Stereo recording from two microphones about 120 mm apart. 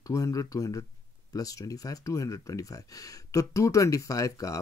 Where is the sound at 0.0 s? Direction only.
30° left (ahead or behind).